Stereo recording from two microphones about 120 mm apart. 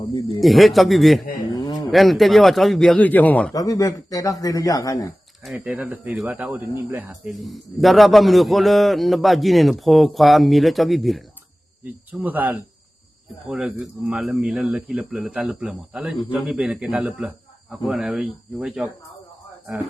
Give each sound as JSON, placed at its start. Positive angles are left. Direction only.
{"t": 0.3, "sound": "a man's voice", "side_deg": 0}
{"t": 1.5, "sound": "a sound", "side_deg": 30}
{"t": 1.9, "sound": "a man's voice", "side_deg": 0}
{"t": 3.0, "sound": "speech", "side_deg": 15}
{"t": 3.5, "sound": "speech", "side_deg": 30}
{"t": 5.5, "sound": "speech", "side_deg": -10}
{"t": 7.1, "sound": "a man's voice", "side_deg": 0}
{"t": 12.2, "sound": "a man's voice", "side_deg": -15}